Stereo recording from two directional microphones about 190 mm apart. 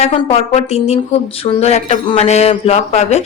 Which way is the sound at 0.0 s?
35° left (ahead or behind).